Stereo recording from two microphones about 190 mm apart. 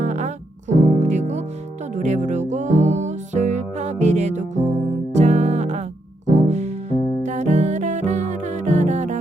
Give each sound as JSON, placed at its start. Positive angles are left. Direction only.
{"t": 0.0, "sound": "music", "side_deg": -40}